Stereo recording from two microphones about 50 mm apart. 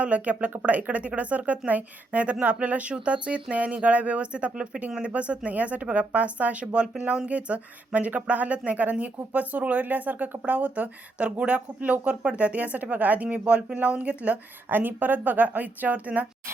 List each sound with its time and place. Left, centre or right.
0.0 s speech: right
14.7 s speech: right